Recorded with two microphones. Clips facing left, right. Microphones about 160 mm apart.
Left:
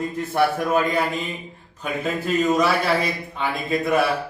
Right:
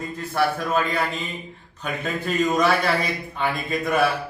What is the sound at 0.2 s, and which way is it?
Speech, 15° left (ahead or behind).